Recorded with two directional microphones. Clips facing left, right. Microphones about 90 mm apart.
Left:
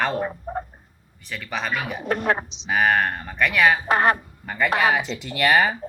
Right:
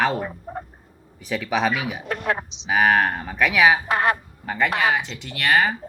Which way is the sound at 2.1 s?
40° left (ahead or behind).